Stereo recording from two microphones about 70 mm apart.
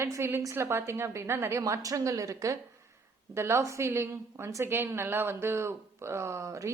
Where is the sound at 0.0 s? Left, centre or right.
Right.